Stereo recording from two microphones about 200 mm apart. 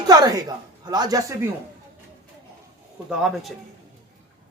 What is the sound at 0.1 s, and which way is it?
Speech, 20° right (ahead or behind).